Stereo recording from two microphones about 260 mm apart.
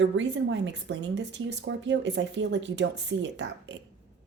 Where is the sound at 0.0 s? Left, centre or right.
Right.